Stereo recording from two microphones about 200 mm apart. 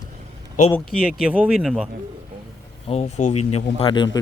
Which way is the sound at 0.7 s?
Centre (ahead or behind).